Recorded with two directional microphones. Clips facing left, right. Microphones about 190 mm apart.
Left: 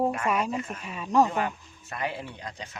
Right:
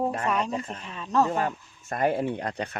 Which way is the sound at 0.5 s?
35° right (ahead or behind).